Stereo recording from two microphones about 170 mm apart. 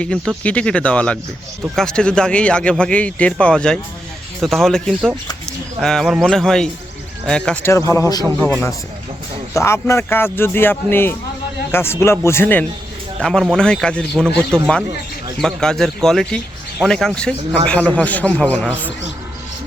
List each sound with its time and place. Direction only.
0.0 s speech: 5° left (ahead or behind)